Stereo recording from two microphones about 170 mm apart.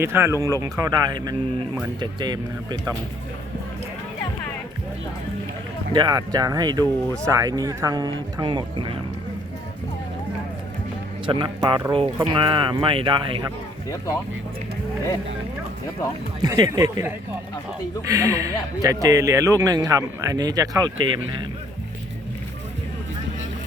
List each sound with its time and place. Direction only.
0.0 s speech: 15° right (ahead or behind)
5.9 s speech: 25° right (ahead or behind)
11.3 s speech: 25° right (ahead or behind)
16.4 s speech: 25° right (ahead or behind)
18.1 s speech: 20° right (ahead or behind)